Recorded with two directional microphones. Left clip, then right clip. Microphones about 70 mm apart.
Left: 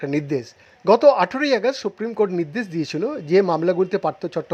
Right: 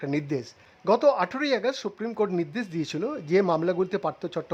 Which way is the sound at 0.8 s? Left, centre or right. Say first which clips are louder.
Left 7 dB; left.